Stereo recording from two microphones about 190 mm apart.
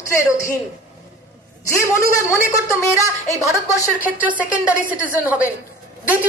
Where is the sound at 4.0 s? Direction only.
10° right (ahead or behind).